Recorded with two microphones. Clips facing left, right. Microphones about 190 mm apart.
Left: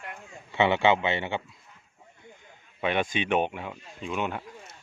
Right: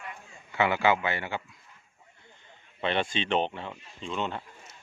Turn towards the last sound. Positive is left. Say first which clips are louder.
# left 2 dB
turn(degrees=10)  # may be behind; listen again after turning